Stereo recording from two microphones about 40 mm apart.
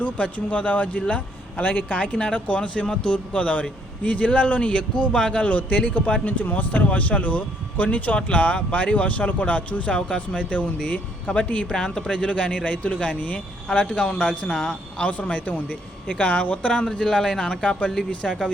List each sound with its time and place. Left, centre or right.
0.0 s speech: left
11.7 s speech: centre
14.6 s a woman's voice: centre
15.0 s speech: left; by 17.6 s centre
17.6 s speech: left